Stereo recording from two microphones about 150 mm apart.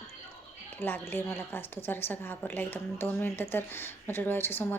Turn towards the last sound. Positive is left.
turn(degrees=15)  # may be behind; listen again after turning